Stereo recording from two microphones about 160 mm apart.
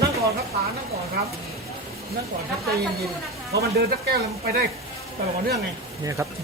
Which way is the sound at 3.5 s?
80° right.